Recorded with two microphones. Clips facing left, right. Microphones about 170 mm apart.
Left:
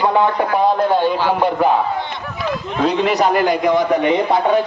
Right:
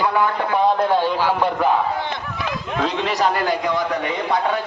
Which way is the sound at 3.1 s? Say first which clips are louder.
Left 5 dB; 20° left (ahead or behind).